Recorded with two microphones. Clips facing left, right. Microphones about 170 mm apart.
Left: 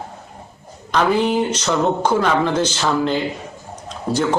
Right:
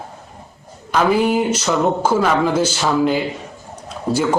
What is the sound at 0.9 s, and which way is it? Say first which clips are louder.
A man's voice: right 1 dB; 10° right (ahead or behind).